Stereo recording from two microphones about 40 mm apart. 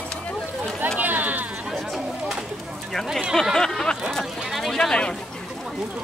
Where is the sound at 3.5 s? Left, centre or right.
Centre.